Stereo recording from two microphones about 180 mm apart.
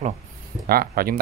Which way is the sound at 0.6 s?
55° right (ahead or behind).